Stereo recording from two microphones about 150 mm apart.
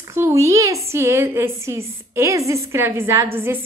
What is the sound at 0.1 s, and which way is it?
A woman's voice, 20° right (ahead or behind).